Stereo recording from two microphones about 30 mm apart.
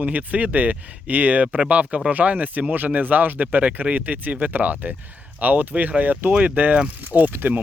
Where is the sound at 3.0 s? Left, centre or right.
Right.